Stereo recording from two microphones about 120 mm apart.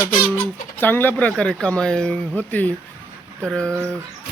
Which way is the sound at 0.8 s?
15° left (ahead or behind).